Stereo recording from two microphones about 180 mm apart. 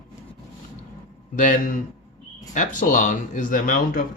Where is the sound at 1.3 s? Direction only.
45° left (ahead or behind).